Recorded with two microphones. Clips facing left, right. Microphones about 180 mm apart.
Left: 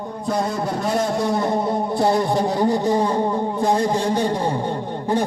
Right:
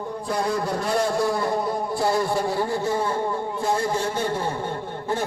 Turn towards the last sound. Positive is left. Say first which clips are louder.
# left 5 dB
turn(degrees=15)  # may be behind; listen again after turning